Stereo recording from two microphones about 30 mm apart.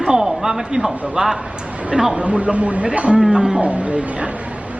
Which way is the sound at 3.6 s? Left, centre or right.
Right.